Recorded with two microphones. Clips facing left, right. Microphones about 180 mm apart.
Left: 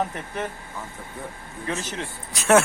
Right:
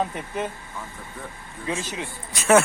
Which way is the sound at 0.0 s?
20° right (ahead or behind).